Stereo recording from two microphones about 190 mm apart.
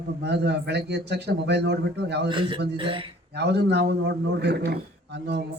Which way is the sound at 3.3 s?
60° right (ahead or behind).